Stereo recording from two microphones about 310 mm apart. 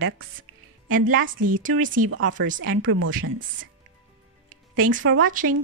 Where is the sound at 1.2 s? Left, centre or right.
Right.